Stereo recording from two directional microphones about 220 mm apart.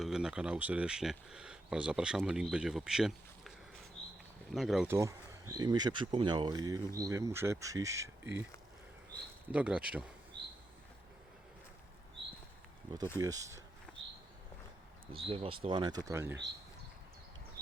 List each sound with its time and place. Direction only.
0.0 s speech: 5° right (ahead or behind)
4.5 s speech: centre (ahead or behind)
4.9 s speech: 15° right (ahead or behind)
9.5 s speech: 5° right (ahead or behind)
10.3 s a sound: 50° right (ahead or behind)
13.1 s speech: 15° right (ahead or behind)
15.1 s speech: 25° right (ahead or behind)